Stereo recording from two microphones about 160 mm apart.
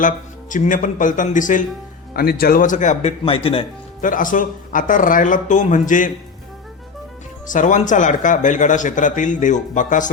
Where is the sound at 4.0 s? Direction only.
55° left (ahead or behind).